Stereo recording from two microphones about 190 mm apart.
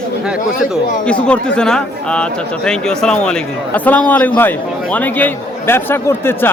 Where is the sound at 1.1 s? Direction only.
5° left (ahead or behind).